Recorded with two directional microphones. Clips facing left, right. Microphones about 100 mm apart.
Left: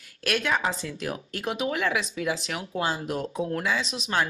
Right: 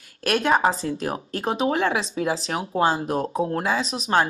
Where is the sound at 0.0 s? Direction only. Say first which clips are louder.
Right 5 dB; 40° right (ahead or behind).